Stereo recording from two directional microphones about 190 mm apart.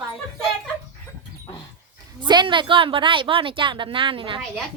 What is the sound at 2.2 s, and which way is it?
A woman's voice, 25° right (ahead or behind).